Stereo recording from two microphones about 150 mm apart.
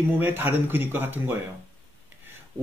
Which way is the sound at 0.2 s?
15° right (ahead or behind).